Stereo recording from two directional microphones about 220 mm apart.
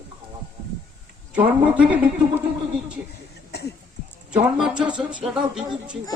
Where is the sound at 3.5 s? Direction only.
50° left (ahead or behind).